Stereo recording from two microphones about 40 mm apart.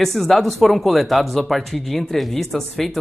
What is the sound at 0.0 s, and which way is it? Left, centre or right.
Speech, centre.